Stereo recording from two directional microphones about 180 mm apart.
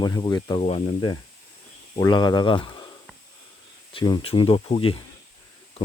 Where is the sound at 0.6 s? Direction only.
35° left (ahead or behind).